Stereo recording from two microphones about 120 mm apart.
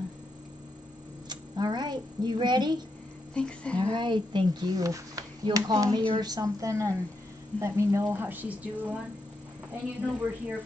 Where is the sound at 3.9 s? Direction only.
40° right (ahead or behind); by 8.5 s 15° right (ahead or behind).